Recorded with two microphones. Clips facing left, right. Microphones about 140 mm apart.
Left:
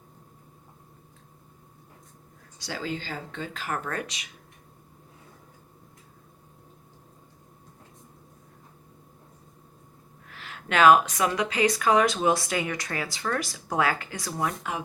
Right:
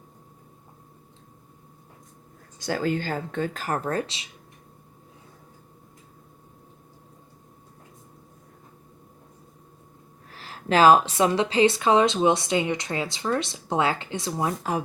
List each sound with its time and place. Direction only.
2.6 s speech: 50° right (ahead or behind); by 4.3 s 30° right (ahead or behind)
10.2 s a woman's voice: 35° right (ahead or behind)